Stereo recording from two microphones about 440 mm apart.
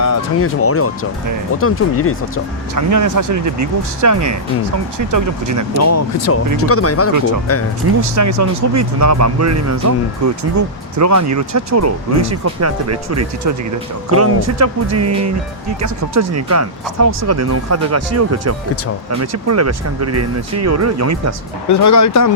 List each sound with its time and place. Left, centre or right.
0.0 s speech: left
2.7 s speech: right
5.7 s speech: left
8.1 s speech: right
21.7 s speech: left